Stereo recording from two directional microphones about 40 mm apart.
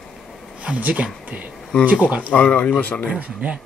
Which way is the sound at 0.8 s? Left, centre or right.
Right.